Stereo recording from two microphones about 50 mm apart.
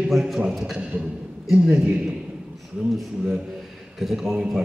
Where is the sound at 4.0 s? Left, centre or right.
Centre.